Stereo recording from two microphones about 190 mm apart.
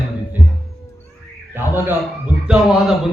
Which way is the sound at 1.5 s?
10° right (ahead or behind).